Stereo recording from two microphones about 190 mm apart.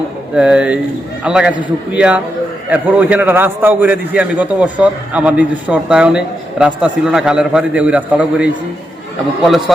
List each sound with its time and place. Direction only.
0.3 s a man's voice: 5° right (ahead or behind)
9.5 s speech: centre (ahead or behind)